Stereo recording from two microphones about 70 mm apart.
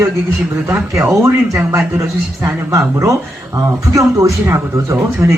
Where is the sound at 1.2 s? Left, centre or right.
Right.